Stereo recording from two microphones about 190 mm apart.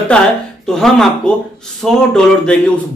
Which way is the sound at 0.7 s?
Centre (ahead or behind).